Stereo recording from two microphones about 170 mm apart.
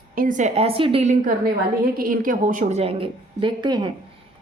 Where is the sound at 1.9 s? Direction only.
55° right (ahead or behind); by 3.9 s 25° right (ahead or behind).